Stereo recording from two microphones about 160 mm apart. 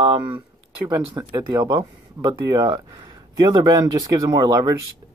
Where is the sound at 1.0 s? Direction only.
25° right (ahead or behind).